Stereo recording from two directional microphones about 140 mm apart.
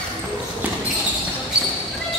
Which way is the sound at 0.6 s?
15° right (ahead or behind).